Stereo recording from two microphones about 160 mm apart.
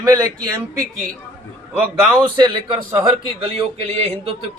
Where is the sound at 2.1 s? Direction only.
30° right (ahead or behind).